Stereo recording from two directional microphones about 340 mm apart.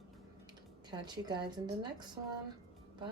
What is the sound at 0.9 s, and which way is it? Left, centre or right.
Speech, centre.